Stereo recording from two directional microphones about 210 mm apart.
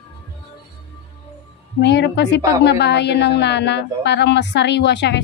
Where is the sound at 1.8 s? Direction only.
55° left (ahead or behind).